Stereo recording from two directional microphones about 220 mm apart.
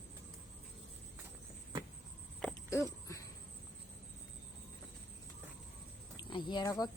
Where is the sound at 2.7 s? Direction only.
15° left (ahead or behind).